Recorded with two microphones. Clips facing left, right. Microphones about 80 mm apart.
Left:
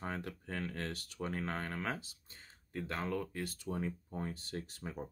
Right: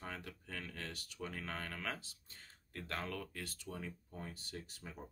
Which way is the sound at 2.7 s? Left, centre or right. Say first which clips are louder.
Left 5 dB; centre.